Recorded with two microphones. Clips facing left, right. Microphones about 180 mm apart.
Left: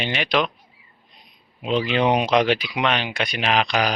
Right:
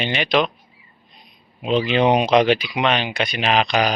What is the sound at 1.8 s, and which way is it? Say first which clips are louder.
Speech: right 3 dB; centre (ahead or behind).